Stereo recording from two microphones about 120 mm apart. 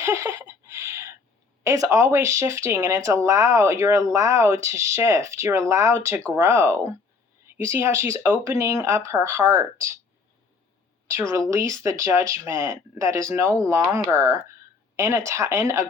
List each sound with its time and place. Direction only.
0.0 s a sound: 25° right (ahead or behind)
1.6 s speech: 25° right (ahead or behind)
11.1 s speech: 25° right (ahead or behind)